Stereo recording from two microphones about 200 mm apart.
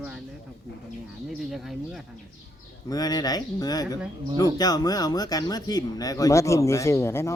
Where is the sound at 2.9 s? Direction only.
20° left (ahead or behind).